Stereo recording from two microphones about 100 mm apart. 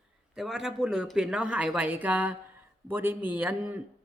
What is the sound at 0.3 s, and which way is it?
Speech, centre (ahead or behind).